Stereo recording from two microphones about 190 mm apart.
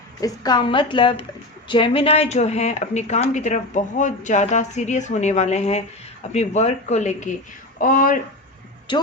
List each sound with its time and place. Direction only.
0.2 s a woman's voice: 20° left (ahead or behind); by 8.2 s 45° left (ahead or behind)
8.9 s speech: 25° left (ahead or behind)